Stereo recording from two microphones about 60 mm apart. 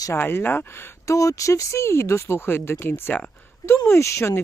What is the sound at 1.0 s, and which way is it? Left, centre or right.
Speech, left.